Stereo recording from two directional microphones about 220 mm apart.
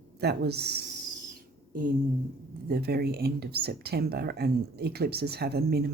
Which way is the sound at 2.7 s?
45° right (ahead or behind).